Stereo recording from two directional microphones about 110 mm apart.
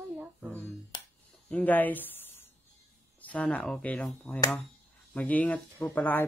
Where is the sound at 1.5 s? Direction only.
15° left (ahead or behind).